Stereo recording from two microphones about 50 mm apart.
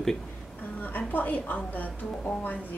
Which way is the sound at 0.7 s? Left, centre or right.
Left.